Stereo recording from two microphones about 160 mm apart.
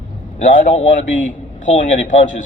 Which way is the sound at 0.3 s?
55° left (ahead or behind).